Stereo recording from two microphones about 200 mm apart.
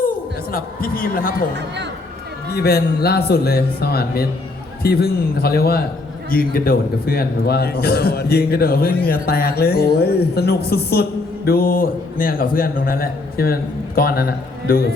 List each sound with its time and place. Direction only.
0.5 s a man's voice: 45° left (ahead or behind)
1.5 s a man's voice: 60° right (ahead or behind)
2.6 s a man's voice: 50° left (ahead or behind)